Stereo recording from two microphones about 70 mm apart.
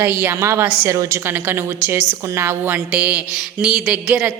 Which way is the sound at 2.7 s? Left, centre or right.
Centre.